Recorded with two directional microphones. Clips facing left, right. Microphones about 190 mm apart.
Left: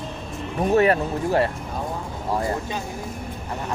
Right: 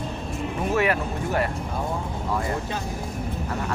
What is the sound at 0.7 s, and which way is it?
Speech, 35° left (ahead or behind).